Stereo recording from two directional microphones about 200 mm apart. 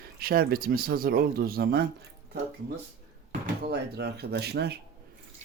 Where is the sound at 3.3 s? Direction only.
50° right (ahead or behind).